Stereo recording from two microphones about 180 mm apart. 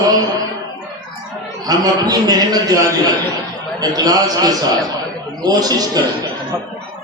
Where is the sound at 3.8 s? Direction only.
20° right (ahead or behind).